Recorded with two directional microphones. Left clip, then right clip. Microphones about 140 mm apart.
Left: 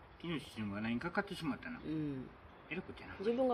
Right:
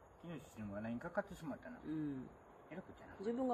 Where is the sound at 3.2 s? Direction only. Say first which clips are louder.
Left 7 dB; 5° left (ahead or behind).